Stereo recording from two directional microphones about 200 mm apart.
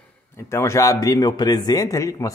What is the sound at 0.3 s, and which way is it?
A man's voice, 10° left (ahead or behind).